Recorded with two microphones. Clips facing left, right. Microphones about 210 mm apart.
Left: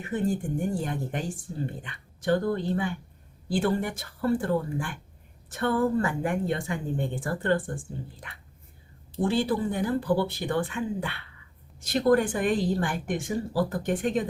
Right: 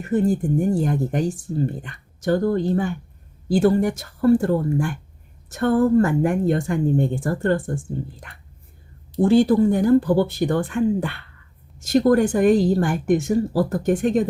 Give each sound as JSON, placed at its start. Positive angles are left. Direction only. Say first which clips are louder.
{"t": 0.0, "sound": "speech", "louder": "right 8 dB", "side_deg": -45}
{"t": 9.1, "sound": "speech", "louder": "right 10 dB", "side_deg": -45}